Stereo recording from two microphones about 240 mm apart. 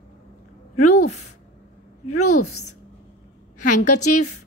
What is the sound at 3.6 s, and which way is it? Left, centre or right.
Speech, left.